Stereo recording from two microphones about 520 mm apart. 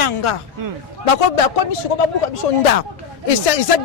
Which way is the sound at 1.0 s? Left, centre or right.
Left.